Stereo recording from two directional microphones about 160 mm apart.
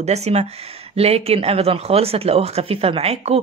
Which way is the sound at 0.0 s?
45° right (ahead or behind).